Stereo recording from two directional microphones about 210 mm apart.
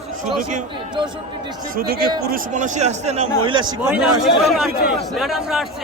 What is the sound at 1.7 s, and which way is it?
A man's voice, 45° right (ahead or behind).